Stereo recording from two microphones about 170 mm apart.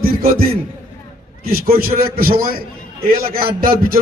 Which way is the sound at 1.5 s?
60° right (ahead or behind).